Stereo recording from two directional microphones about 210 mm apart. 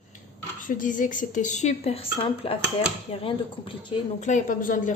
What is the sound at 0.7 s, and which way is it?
A woman's voice, 40° left (ahead or behind).